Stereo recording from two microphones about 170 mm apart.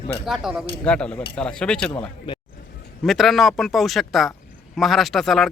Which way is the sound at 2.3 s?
30° left (ahead or behind).